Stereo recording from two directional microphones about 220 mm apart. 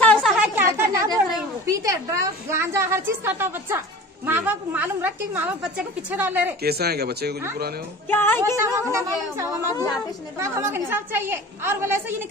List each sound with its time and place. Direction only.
0.0 s a sound: 5° left (ahead or behind); by 1.2 s 15° right (ahead or behind)
1.7 s a woman's voice: 15° right (ahead or behind)
6.6 s speech: 45° right (ahead or behind)
8.1 s music: 10° left (ahead or behind)
8.5 s a woman's voice: 15° right (ahead or behind)